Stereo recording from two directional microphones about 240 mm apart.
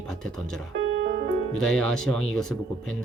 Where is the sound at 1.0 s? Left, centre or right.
Right.